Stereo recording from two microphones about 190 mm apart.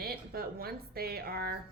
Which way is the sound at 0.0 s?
55° right (ahead or behind).